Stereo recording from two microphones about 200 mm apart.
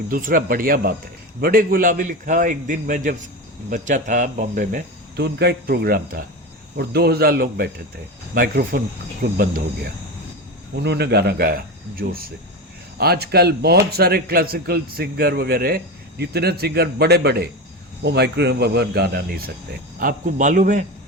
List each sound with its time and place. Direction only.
0.1 s a man's voice: 45° right (ahead or behind)
10.8 s a man's voice: 55° right (ahead or behind); by 20.8 s 40° right (ahead or behind)